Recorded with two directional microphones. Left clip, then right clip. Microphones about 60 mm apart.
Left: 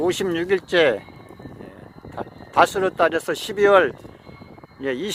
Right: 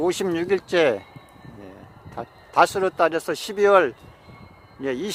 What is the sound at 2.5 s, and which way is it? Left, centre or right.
Speech, left.